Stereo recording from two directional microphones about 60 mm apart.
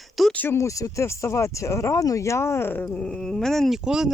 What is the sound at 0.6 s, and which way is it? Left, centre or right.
Speech, left.